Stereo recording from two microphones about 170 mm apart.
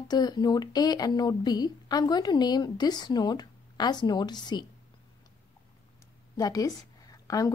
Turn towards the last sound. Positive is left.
turn(degrees=20)  # may be behind; listen again after turning